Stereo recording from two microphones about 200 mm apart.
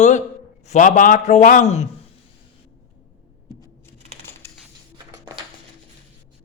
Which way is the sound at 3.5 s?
15° left (ahead or behind).